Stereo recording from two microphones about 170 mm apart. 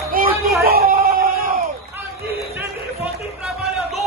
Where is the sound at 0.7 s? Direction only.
60° right (ahead or behind).